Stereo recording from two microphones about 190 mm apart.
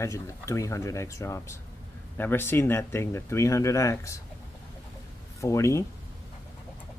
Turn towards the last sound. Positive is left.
turn(degrees=15)  # may be behind; listen again after turning